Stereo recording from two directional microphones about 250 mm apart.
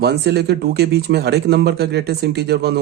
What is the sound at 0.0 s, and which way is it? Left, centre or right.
Speech, right.